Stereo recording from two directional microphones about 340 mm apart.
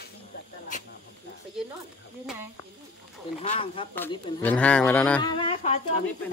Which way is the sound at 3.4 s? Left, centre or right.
Centre.